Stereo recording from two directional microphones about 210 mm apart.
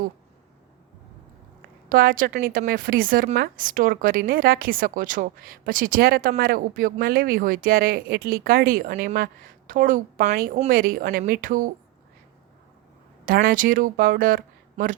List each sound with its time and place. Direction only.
1.9 s a woman's voice: 45° right (ahead or behind)
13.2 s speech: 45° right (ahead or behind)